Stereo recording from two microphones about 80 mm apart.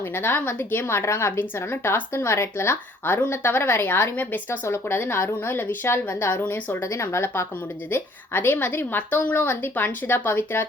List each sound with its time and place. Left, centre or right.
0.1 s speech: left